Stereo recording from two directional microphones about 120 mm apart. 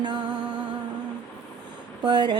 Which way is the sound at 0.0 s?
40° right (ahead or behind).